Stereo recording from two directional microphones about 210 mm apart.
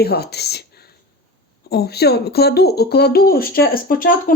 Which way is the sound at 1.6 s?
50° left (ahead or behind).